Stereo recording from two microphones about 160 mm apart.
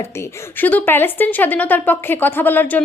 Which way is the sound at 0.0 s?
15° left (ahead or behind).